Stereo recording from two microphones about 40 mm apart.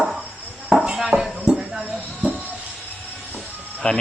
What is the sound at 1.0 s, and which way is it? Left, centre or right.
Music, centre.